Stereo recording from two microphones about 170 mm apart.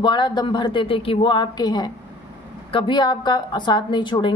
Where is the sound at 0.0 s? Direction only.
25° left (ahead or behind).